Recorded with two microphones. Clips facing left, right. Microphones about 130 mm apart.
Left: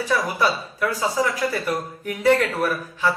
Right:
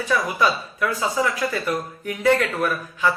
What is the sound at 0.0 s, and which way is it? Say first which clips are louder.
Speech: even; 35° left (ahead or behind).